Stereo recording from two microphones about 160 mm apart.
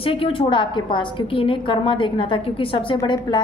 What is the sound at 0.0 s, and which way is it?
A woman's voice, 35° left (ahead or behind).